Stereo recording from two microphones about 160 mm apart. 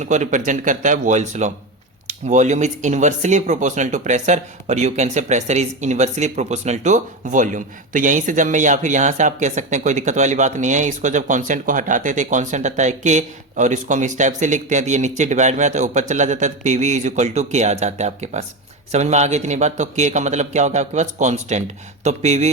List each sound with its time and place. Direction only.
0.0 s speech: 50° right (ahead or behind)